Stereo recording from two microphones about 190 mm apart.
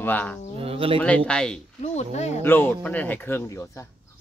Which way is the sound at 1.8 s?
35° left (ahead or behind).